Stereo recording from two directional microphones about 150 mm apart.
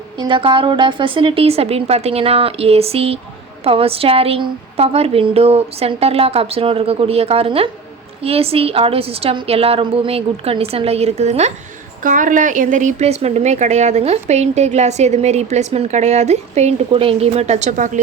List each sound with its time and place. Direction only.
0.2 s a woman's voice: 35° right (ahead or behind); by 11.5 s 50° right (ahead or behind)
12.0 s speech: 60° right (ahead or behind)